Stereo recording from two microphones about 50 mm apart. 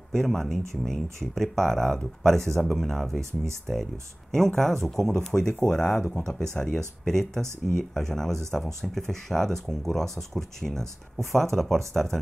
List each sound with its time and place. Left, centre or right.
0.1 s speech: centre
4.3 s speech: centre